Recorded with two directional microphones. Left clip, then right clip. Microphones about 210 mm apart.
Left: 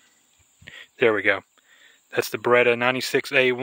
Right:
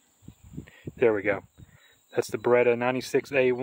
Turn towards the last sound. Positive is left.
turn(degrees=0)  # may be behind; listen again after turning